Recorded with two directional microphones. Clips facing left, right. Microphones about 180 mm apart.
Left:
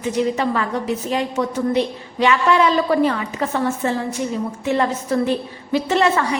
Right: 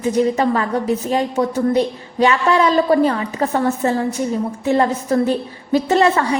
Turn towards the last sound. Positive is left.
turn(degrees=-35)  # may be behind; listen again after turning